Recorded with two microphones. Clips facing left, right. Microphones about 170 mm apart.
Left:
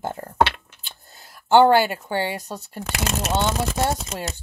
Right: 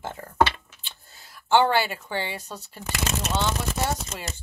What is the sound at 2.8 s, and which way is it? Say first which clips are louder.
Speech: left 3 dB; 75° left (ahead or behind).